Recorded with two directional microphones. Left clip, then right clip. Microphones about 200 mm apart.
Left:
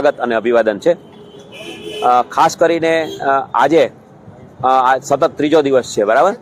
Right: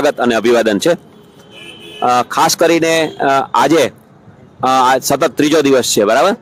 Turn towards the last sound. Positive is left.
turn(degrees=-35)  # may be behind; listen again after turning